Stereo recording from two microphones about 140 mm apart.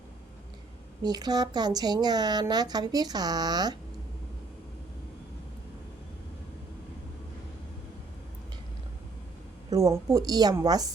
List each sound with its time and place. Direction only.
1.0 s a woman's voice: 30° right (ahead or behind)
9.6 s a woman's voice: 25° right (ahead or behind)